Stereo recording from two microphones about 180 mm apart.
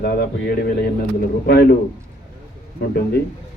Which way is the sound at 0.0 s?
60° left (ahead or behind).